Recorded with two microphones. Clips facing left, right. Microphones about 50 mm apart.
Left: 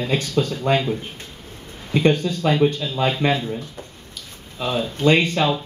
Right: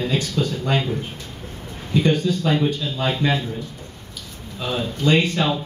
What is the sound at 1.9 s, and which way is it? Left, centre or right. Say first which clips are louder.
Speech: left 1 dB; left.